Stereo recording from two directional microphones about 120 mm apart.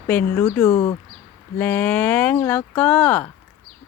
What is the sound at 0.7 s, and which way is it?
Speech, 50° left (ahead or behind).